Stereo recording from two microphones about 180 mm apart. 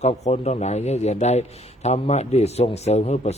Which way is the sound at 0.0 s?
35° left (ahead or behind).